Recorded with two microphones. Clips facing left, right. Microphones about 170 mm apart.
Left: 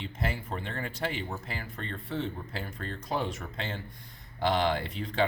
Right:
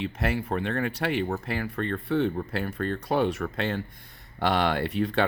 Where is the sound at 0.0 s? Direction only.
70° right (ahead or behind).